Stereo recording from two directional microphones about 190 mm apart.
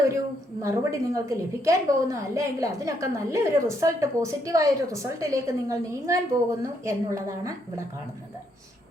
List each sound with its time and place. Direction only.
0.6 s a woman's voice: 15° right (ahead or behind)